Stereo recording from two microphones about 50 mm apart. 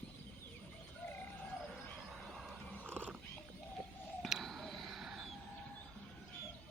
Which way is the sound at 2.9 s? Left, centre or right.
Left.